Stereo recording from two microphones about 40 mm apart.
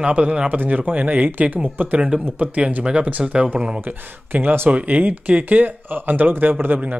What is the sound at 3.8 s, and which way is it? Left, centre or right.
Speech, right.